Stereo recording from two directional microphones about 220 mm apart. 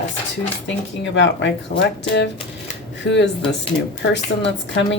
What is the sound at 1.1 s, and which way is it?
Speech, 55° left (ahead or behind).